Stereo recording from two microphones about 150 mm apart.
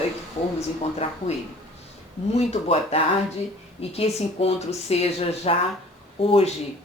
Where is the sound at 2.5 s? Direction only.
45° left (ahead or behind).